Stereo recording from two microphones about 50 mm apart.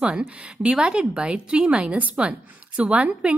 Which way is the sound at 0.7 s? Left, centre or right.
Centre.